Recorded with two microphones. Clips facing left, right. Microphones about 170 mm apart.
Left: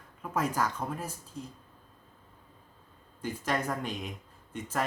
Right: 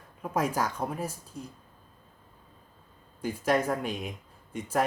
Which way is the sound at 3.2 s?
10° right (ahead or behind).